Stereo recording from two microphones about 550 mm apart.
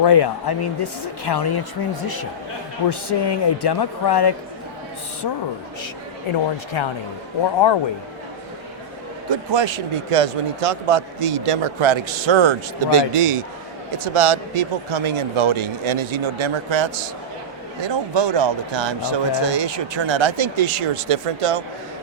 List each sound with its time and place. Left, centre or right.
0.0 s speech: left
6.8 s a man's voice: left
9.3 s a man's voice: right